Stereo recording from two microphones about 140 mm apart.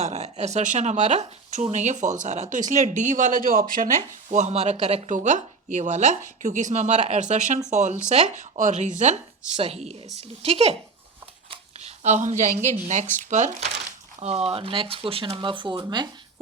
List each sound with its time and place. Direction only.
0.0 s speech: 50° right (ahead or behind)
11.8 s a woman's voice: 55° right (ahead or behind); by 16.0 s 35° right (ahead or behind)